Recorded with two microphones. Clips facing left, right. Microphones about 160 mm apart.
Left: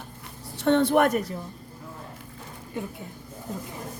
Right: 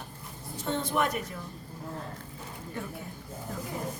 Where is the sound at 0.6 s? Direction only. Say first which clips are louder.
Left 9 dB; 70° left (ahead or behind).